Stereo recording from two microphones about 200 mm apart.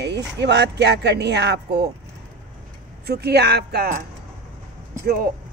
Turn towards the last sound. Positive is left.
turn(degrees=-45)  # may be behind; listen again after turning